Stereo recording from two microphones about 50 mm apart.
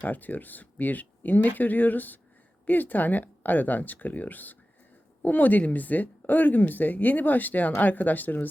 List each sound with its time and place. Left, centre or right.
0.0 s speech: left